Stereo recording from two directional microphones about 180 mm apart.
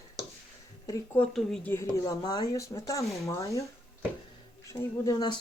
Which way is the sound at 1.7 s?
20° left (ahead or behind).